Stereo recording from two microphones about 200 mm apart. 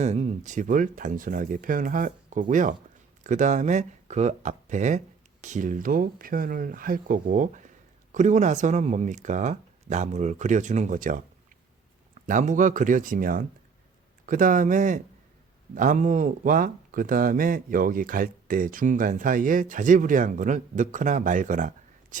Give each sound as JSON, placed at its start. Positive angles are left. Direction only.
{"t": 0.0, "sound": "speech", "side_deg": -35}
{"t": 12.2, "sound": "speech", "side_deg": -40}
{"t": 22.1, "sound": "whispering", "side_deg": -40}